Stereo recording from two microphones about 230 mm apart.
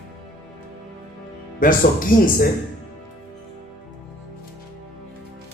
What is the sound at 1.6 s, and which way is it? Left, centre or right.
Speech, left.